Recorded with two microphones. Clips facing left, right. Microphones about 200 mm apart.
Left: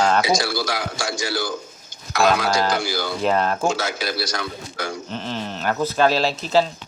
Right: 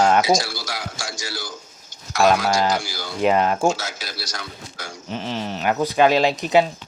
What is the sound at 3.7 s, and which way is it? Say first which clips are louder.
A man's voice: left 5 dB; 60° left (ahead or behind).